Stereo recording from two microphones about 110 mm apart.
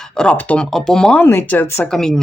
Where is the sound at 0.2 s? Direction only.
10° left (ahead or behind).